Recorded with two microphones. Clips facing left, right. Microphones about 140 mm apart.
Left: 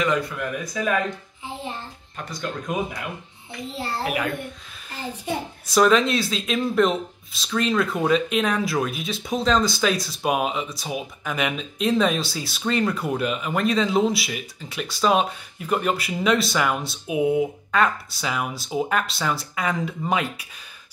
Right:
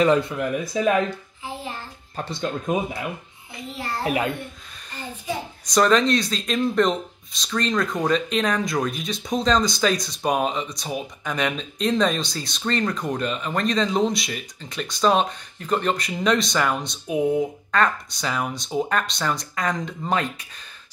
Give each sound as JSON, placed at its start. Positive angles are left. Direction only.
{"t": 0.0, "sound": "speech", "side_deg": -30}
{"t": 2.1, "sound": "speech", "side_deg": -25}
{"t": 3.7, "sound": "a child's voice", "side_deg": 30}
{"t": 4.0, "sound": "speech", "side_deg": -30}
{"t": 5.7, "sound": "speech", "side_deg": 5}